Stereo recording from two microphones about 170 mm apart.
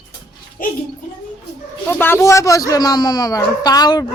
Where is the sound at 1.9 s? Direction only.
10° left (ahead or behind).